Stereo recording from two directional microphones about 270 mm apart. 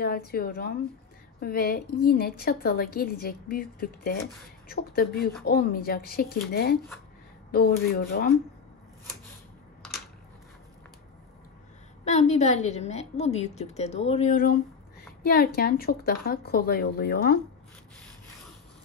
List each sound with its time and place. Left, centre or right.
0.0 s a woman's voice: left
12.0 s a woman's voice: left